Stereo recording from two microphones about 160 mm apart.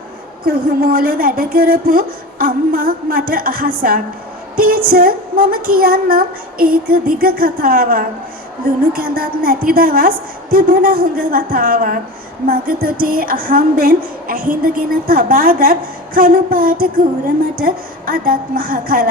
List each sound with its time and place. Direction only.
0.4 s a woman's voice: 65° right (ahead or behind)